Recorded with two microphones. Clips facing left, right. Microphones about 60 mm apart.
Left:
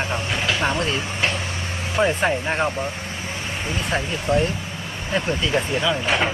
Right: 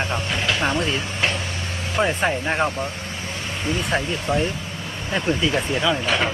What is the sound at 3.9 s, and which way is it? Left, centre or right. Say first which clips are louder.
Speech: left 3 dB; centre.